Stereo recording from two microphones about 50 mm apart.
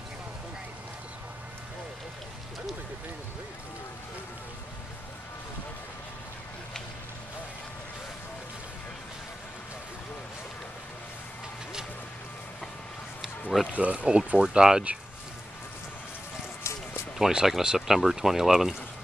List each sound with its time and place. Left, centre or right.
13.7 s speech: right
16.6 s a sound: left
17.2 s speech: centre